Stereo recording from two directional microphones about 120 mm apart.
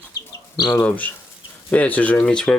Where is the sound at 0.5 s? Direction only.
35° left (ahead or behind).